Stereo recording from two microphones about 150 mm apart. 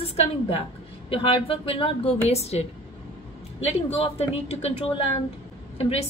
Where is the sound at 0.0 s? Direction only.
40° left (ahead or behind).